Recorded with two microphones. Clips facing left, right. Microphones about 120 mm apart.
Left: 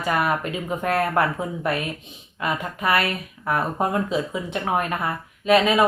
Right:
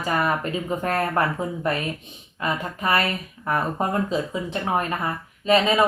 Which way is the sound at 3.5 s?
10° left (ahead or behind).